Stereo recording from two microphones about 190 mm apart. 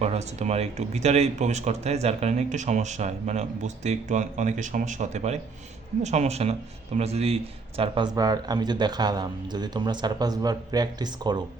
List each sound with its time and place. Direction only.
0.0 s speech: 35° right (ahead or behind)